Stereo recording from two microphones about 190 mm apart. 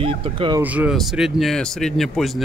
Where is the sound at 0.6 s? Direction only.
5° right (ahead or behind).